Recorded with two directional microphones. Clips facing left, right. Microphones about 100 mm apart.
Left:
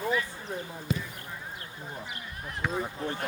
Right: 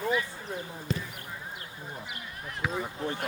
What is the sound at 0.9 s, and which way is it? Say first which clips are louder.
Basketball bounce: left 1 dB; 10° left (ahead or behind).